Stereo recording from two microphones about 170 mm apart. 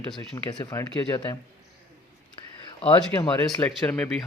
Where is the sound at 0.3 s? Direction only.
20° left (ahead or behind).